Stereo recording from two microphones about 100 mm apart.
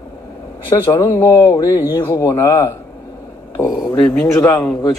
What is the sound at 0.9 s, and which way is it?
Speech, 25° left (ahead or behind).